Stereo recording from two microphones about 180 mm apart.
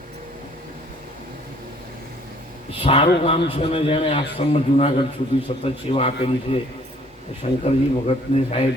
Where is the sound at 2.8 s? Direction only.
30° left (ahead or behind).